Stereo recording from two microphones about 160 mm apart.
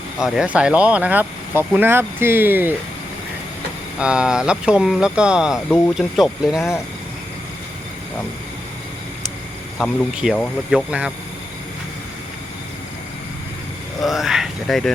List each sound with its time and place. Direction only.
0.2 s speech: 5° right (ahead or behind)
4.0 s speech: 5° right (ahead or behind)
9.7 s speech: 10° left (ahead or behind)
10.7 s speech: 5° right (ahead or behind)
14.0 s speech: centre (ahead or behind)